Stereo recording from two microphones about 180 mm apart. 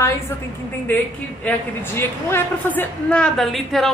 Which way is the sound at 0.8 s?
10° left (ahead or behind).